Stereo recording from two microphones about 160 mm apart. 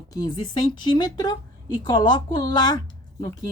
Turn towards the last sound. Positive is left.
turn(degrees=25)  # may be behind; listen again after turning